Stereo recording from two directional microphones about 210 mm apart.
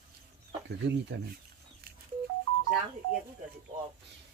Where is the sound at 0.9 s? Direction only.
55° right (ahead or behind).